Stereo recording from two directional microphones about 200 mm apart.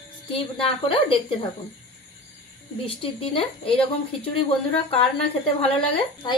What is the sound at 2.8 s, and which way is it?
Speech, 25° left (ahead or behind).